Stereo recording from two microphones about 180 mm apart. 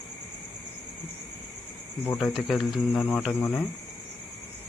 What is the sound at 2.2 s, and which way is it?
Speech, centre (ahead or behind).